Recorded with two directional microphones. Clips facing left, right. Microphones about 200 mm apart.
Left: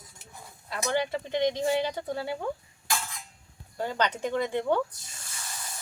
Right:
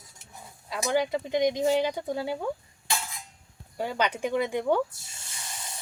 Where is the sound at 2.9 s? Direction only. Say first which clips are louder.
Even; 10° right (ahead or behind).